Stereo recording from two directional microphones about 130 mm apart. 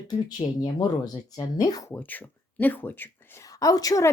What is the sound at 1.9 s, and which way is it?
Speech, 15° left (ahead or behind).